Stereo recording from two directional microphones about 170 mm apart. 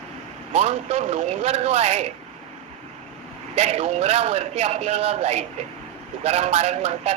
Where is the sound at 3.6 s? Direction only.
35° right (ahead or behind).